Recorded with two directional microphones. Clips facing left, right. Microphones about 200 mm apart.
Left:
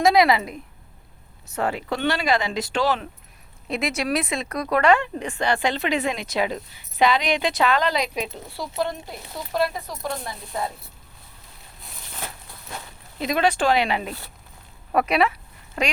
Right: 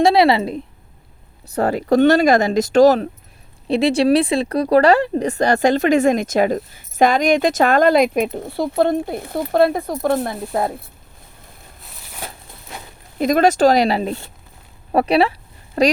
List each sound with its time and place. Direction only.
0.0 s a woman's voice: 30° right (ahead or behind)
3.7 s speech: 30° right (ahead or behind); by 10.7 s 55° right (ahead or behind)
13.1 s speech: 45° right (ahead or behind)
14.9 s a sound: 30° right (ahead or behind)